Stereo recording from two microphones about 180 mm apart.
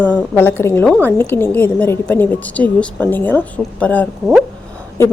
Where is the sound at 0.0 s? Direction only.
10° left (ahead or behind).